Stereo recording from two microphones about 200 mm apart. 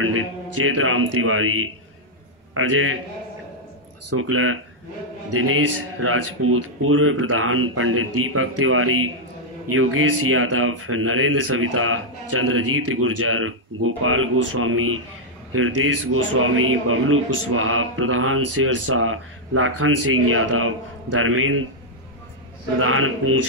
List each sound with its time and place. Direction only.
0.0 s a man's voice: 90° right
4.2 s a man's voice: 90° right
22.8 s a man's voice: 90° right